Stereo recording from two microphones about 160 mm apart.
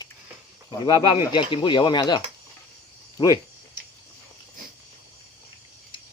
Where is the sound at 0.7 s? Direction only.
30° left (ahead or behind).